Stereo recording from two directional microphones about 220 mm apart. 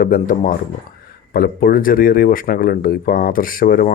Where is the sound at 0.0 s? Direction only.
40° left (ahead or behind).